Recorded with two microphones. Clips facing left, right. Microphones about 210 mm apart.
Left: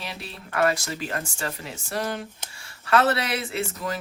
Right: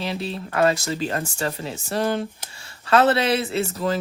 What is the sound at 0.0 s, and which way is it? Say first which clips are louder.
Speech: right 10 dB; 25° right (ahead or behind).